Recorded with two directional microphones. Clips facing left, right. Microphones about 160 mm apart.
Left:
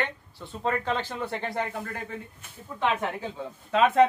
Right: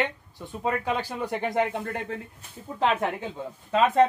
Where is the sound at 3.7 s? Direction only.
Centre (ahead or behind).